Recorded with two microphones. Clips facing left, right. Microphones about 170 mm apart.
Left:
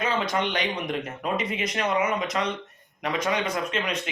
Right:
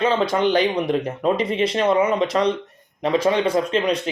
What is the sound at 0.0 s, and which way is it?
Speech, 30° right (ahead or behind).